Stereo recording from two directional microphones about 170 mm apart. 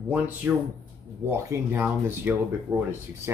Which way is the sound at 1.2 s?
15° right (ahead or behind).